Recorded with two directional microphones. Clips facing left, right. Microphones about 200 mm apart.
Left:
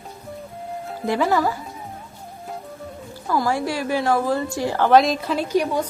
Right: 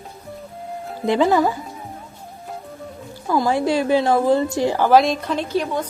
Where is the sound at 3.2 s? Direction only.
20° right (ahead or behind).